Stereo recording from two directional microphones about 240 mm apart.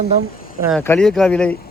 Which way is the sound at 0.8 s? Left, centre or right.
Centre.